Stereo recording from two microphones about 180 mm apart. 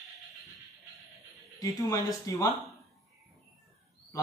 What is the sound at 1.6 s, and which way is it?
Speech, 20° left (ahead or behind).